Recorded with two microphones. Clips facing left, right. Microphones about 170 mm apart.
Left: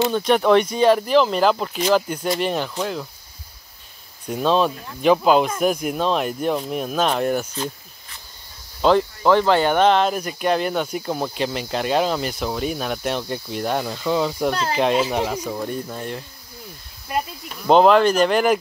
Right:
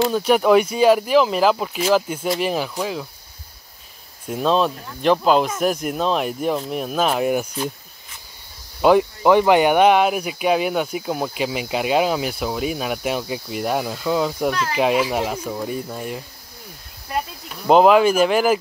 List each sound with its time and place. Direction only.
0.0 s speech: 5° right (ahead or behind)
4.3 s speech: centre (ahead or behind)
8.8 s speech: 15° right (ahead or behind)
14.5 s speech: 30° left (ahead or behind)
15.0 s speech: 5° right (ahead or behind)
17.6 s speech: 5° right (ahead or behind)